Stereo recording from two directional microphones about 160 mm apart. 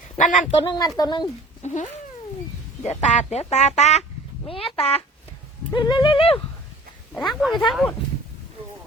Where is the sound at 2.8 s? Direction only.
45° left (ahead or behind).